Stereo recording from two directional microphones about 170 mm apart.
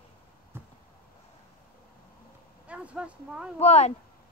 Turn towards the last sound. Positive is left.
turn(degrees=40)  # may be behind; listen again after turning